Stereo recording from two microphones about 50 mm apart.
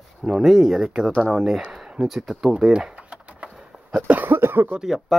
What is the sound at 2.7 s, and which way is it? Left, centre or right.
Typing, centre.